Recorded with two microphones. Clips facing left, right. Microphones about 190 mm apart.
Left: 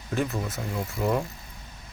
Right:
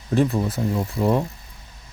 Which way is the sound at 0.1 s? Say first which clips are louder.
Right 8 dB; 35° right (ahead or behind).